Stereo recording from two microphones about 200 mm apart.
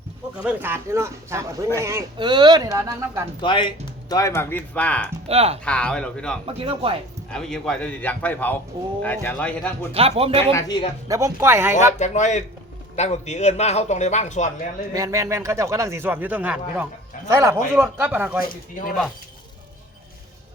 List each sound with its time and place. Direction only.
0.4 s speech: 10° right (ahead or behind)
3.4 s speech: 25° left (ahead or behind); by 5.1 s 5° left (ahead or behind)
5.3 s speech: 30° right (ahead or behind)
5.6 s speech: 5° left (ahead or behind)
6.4 s speech: 25° right (ahead or behind)
7.3 s speech: 5° left (ahead or behind)
9.9 s speech: 30° right (ahead or behind)
10.5 s speech: 20° left (ahead or behind)
11.1 s speech: 15° right (ahead or behind)
11.9 s speech: 35° left (ahead or behind)
14.9 s speech: 15° right (ahead or behind)